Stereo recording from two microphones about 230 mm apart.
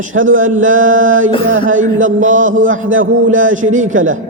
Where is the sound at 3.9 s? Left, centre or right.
Right.